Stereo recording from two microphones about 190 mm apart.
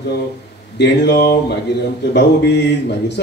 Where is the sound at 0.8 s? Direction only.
60° left (ahead or behind).